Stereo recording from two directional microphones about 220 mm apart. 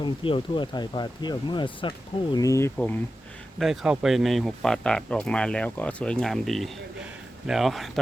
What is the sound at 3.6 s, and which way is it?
Speech, centre (ahead or behind).